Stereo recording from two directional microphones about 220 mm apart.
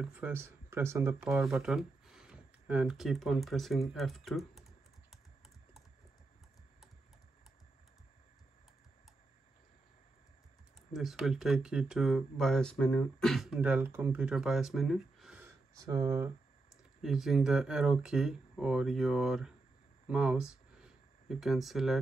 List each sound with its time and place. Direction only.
0.0 s speech: 5° right (ahead or behind)
10.9 s speech: centre (ahead or behind)
17.0 s speech: centre (ahead or behind)
20.1 s a sound: 5° right (ahead or behind)